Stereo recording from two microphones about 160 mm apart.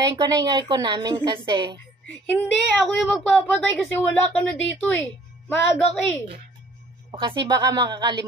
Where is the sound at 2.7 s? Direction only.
5° left (ahead or behind).